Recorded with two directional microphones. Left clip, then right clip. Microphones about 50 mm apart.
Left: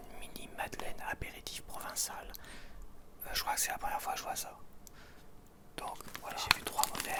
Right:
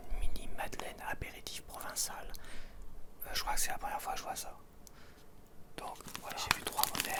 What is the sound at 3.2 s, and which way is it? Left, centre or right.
Speech, centre.